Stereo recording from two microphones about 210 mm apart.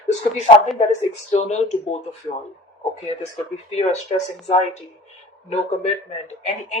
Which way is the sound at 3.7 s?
30° left (ahead or behind).